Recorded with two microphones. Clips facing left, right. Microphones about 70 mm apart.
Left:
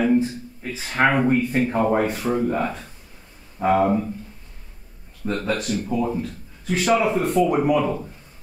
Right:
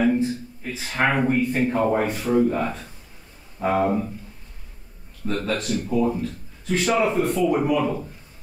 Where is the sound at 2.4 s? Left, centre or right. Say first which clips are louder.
Even; centre.